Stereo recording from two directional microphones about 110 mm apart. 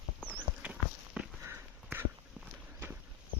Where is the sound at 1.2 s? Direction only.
5° right (ahead or behind).